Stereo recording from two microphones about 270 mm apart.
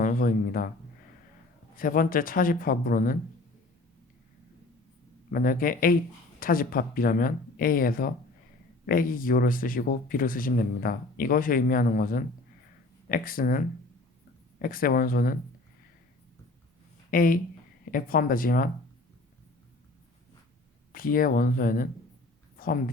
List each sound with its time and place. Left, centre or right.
0.0 s speech: left
1.7 s speech: left
5.3 s speech: left
14.6 s speech: left
17.1 s speech: left
20.9 s speech: left
22.5 s a sound: left